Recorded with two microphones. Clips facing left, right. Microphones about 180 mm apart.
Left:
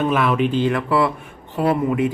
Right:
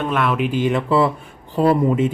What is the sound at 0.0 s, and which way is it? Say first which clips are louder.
Speech: left 2 dB; centre (ahead or behind).